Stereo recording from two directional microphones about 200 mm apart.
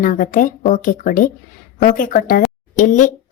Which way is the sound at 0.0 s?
40° left (ahead or behind).